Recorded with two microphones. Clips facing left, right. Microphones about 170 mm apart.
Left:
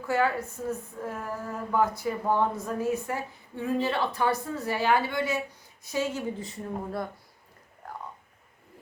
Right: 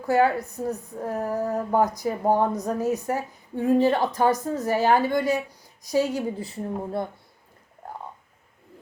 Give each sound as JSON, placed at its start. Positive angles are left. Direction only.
{"t": 0.0, "sound": "speech", "side_deg": -40}